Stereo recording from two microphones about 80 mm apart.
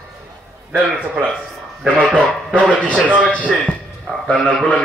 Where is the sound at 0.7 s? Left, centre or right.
Centre.